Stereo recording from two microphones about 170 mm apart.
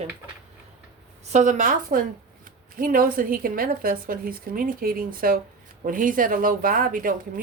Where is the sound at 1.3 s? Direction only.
45° right (ahead or behind).